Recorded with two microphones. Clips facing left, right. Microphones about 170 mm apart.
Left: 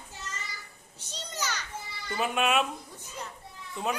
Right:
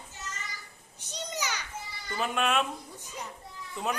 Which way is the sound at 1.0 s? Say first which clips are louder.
Right 1 dB; 15° right (ahead or behind).